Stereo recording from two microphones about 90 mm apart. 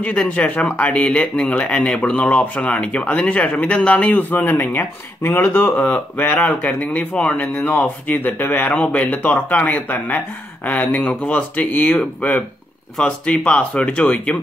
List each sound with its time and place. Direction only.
0.0 s speech: 15° left (ahead or behind)